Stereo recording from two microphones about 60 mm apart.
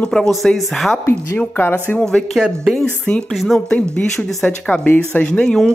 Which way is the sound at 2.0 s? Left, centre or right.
Centre.